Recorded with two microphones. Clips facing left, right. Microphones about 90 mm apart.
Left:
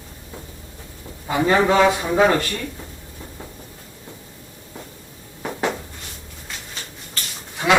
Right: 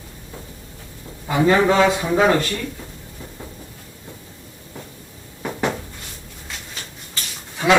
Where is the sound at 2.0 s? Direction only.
Centre (ahead or behind).